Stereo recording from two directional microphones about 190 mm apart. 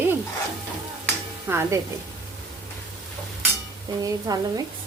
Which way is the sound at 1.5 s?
15° right (ahead or behind).